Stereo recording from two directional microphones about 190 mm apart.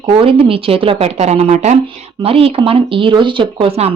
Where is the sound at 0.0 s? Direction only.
30° right (ahead or behind).